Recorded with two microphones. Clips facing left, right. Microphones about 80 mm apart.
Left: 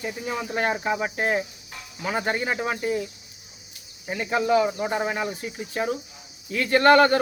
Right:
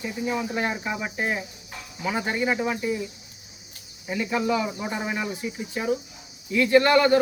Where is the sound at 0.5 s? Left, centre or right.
Left.